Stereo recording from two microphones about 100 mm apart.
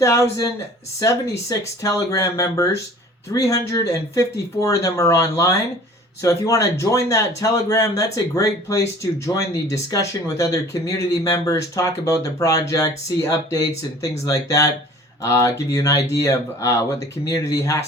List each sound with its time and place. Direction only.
0.0 s speech: 30° left (ahead or behind)